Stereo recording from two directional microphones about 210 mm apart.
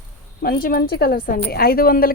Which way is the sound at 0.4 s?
45° left (ahead or behind).